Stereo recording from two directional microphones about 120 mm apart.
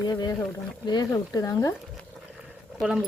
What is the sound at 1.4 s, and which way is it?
Speech, 30° left (ahead or behind).